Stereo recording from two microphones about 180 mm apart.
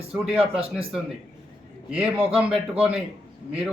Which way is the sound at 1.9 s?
5° right (ahead or behind).